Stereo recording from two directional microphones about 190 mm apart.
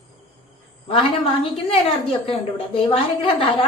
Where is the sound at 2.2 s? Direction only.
30° left (ahead or behind).